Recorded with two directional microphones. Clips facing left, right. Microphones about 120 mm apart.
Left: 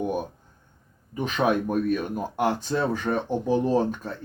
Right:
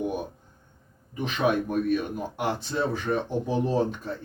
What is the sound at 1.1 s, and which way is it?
Speech, 45° left (ahead or behind).